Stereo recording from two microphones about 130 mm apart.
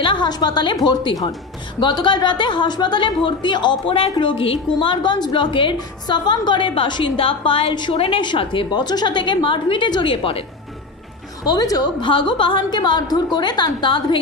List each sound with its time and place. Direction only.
0.0 s a woman's voice: 40° left (ahead or behind)
1.8 s a woman's voice: 35° left (ahead or behind)
11.4 s a woman's voice: 30° left (ahead or behind)